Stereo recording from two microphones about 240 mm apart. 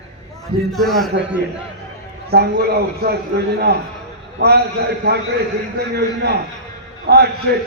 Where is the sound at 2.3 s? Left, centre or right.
Right.